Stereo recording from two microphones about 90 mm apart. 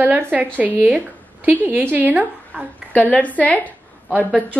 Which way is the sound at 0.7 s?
15° right (ahead or behind).